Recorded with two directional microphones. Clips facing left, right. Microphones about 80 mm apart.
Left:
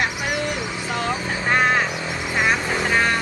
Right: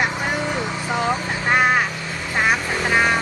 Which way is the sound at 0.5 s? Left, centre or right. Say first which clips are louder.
Right 2 dB; right.